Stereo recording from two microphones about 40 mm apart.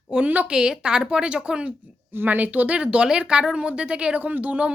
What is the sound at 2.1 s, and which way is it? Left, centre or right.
Speech, right.